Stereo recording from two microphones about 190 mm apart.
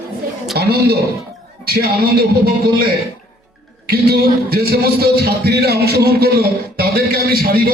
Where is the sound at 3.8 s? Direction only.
55° right (ahead or behind).